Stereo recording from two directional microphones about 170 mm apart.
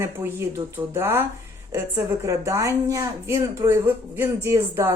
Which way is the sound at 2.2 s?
20° right (ahead or behind).